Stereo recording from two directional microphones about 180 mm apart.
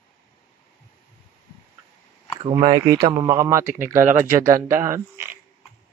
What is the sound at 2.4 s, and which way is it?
Speech, 25° right (ahead or behind).